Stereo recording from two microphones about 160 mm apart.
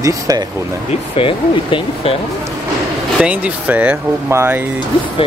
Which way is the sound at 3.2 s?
10° right (ahead or behind).